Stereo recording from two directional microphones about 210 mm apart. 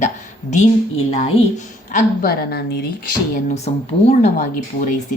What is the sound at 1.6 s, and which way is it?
A woman's voice, 35° left (ahead or behind).